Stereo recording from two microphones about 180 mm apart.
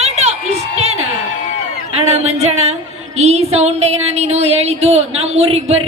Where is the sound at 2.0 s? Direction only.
35° right (ahead or behind).